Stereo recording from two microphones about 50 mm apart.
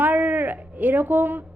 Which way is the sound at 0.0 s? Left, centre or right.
Right.